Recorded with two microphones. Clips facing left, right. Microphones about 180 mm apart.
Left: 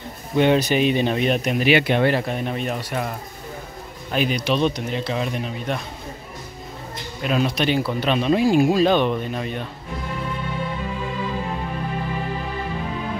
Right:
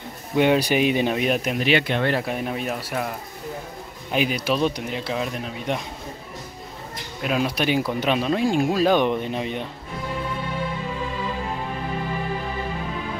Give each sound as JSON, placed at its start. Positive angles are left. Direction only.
{"t": 0.4, "sound": "speech", "side_deg": -10}
{"t": 1.6, "sound": "speech", "side_deg": 10}
{"t": 2.1, "sound": "speech", "side_deg": -5}
{"t": 7.2, "sound": "speech", "side_deg": -5}
{"t": 8.3, "sound": "speech", "side_deg": 5}
{"t": 8.8, "sound": "speech", "side_deg": -15}